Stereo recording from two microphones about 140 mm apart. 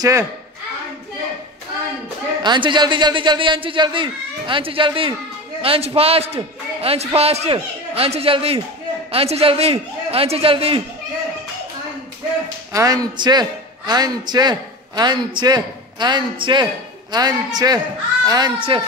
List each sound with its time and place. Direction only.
0.0 s a man's voice: 20° right (ahead or behind)
2.4 s a man's voice: 35° right (ahead or behind)
12.7 s a man's voice: 25° right (ahead or behind)